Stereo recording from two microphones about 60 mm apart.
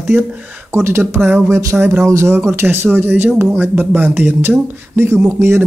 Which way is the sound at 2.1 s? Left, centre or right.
Right.